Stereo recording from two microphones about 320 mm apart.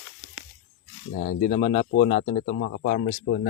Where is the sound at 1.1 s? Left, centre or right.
Left.